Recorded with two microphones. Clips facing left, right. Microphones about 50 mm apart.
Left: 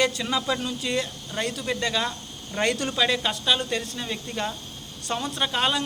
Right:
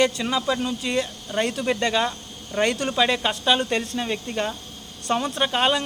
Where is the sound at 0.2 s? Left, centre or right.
Centre.